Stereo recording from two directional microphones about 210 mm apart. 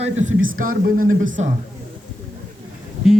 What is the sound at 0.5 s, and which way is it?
Speech, 40° right (ahead or behind).